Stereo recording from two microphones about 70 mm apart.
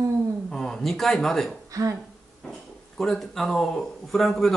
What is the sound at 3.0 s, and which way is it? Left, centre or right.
Speech, centre.